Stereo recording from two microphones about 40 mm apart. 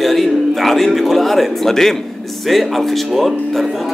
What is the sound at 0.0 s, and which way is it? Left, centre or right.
A man's voice, centre.